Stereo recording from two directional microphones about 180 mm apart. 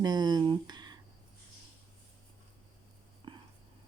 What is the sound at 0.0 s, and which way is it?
Speech, 25° right (ahead or behind).